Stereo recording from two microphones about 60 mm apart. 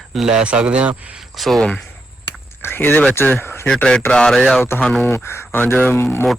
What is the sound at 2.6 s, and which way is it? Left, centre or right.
Speech, left.